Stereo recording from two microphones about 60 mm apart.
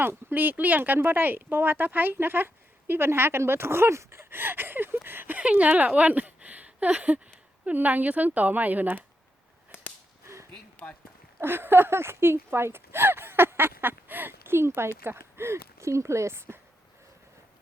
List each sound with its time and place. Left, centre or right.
0.0 s speech: right
4.3 s speech: right
5.4 s a woman's voice: right
10.5 s a sound: left
11.3 s speech: right